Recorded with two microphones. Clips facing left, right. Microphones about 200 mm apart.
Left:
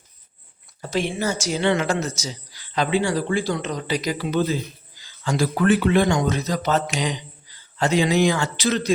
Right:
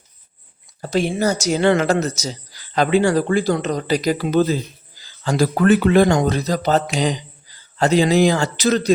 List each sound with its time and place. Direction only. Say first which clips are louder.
0.8 s speech: right 5 dB; 35° right (ahead or behind)